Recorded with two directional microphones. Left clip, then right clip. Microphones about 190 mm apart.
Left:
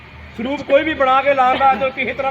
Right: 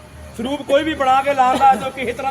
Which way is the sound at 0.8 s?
25° left (ahead or behind).